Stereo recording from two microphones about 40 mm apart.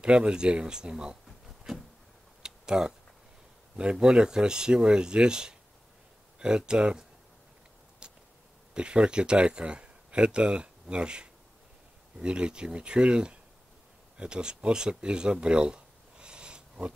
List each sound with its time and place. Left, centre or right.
0.0 s speech: right
2.4 s tick-tock: centre
3.7 s speech: right
8.0 s a sound: right
8.7 s speech: right
15.4 s a sound: right